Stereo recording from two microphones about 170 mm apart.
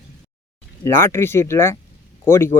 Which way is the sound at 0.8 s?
15° left (ahead or behind).